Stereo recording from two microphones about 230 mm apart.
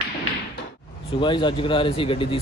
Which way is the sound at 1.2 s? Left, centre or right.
Left.